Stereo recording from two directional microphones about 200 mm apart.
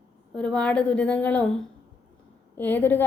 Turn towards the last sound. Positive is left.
turn(degrees=10)  # may be behind; listen again after turning